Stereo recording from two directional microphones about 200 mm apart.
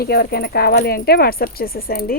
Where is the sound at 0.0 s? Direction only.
50° left (ahead or behind).